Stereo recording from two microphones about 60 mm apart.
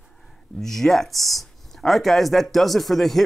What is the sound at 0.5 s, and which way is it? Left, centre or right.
Speech, centre.